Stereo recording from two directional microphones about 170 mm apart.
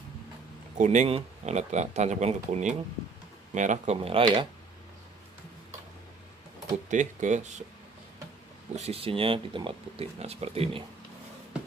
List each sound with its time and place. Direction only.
0.7 s speech: 45° right (ahead or behind)
6.9 s speech: 45° right (ahead or behind)
8.7 s speech: 35° right (ahead or behind)